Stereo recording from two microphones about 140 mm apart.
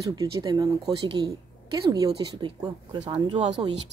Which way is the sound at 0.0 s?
25° right (ahead or behind).